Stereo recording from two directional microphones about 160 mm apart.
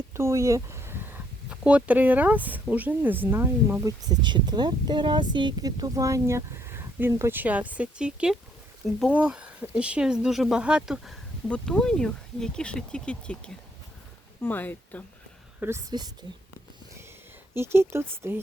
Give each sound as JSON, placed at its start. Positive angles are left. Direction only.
{"t": 0.1, "sound": "speech", "side_deg": -15}
{"t": 15.9, "sound": "a woman's voice", "side_deg": -25}
{"t": 17.5, "sound": "speech", "side_deg": -15}